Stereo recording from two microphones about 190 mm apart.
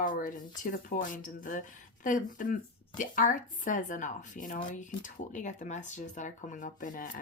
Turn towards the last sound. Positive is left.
turn(degrees=45)  # may be behind; listen again after turning